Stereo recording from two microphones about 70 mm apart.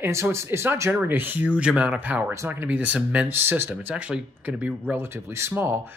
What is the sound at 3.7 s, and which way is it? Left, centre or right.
Speech, right.